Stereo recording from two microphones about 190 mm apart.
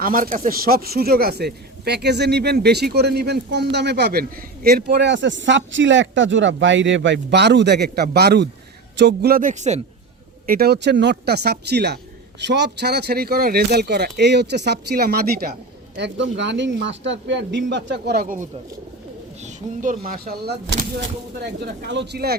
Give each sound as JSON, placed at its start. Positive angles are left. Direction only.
{"t": 0.0, "sound": "speech", "side_deg": -50}
{"t": 10.4, "sound": "speech", "side_deg": -50}
{"t": 16.0, "sound": "speech", "side_deg": -70}
{"t": 19.4, "sound": "speech", "side_deg": -40}